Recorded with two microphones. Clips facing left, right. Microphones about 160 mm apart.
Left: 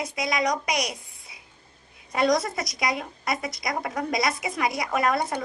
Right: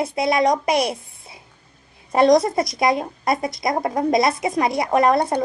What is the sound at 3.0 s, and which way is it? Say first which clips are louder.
Speech: right 7 dB; 50° right (ahead or behind).